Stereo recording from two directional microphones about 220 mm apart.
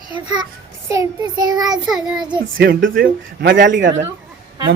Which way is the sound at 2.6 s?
40° right (ahead or behind).